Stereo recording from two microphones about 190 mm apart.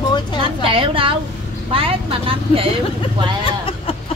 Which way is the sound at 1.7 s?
30° right (ahead or behind).